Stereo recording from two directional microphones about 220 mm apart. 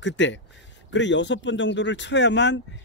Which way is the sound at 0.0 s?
55° left (ahead or behind).